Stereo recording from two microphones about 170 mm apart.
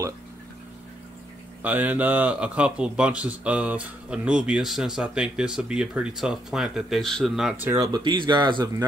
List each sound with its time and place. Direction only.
1.6 s a man's voice: 10° right (ahead or behind)
7.6 s speech: 15° right (ahead or behind)